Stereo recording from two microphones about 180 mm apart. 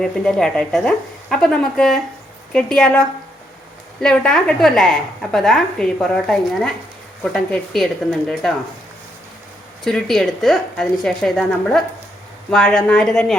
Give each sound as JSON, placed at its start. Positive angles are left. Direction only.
{"t": 0.0, "sound": "a woman's voice", "side_deg": 5}
{"t": 9.8, "sound": "a woman's voice", "side_deg": 0}